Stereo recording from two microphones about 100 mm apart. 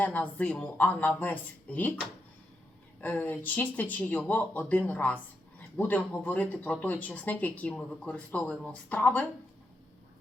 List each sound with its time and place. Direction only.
0.0 s speech: 15° left (ahead or behind)
3.0 s speech: 20° left (ahead or behind)